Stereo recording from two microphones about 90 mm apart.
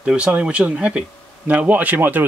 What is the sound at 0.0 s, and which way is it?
Speech, 15° right (ahead or behind).